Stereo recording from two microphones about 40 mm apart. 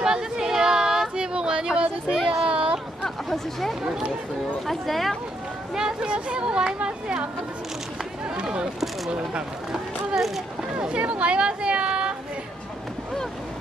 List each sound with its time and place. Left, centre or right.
0.0 s a sound: right
3.0 s hubbub: centre
4.6 s speech: centre
5.8 s speech: right
8.4 s speech: right
9.7 s speech: centre
10.8 s speech: right